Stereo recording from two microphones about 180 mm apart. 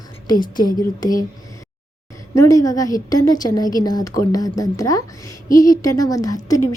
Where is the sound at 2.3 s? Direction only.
20° left (ahead or behind).